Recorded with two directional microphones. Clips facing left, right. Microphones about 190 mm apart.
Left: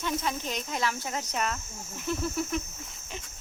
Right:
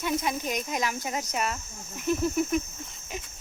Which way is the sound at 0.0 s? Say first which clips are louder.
Right 3 dB; 10° right (ahead or behind).